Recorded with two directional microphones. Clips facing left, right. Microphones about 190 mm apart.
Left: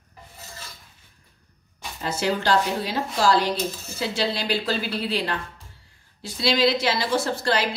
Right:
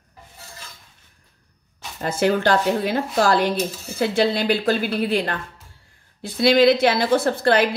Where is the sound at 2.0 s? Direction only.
50° right (ahead or behind).